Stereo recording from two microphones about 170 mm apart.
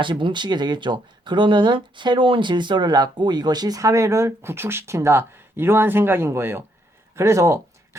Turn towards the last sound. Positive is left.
turn(degrees=-15)  # may be behind; listen again after turning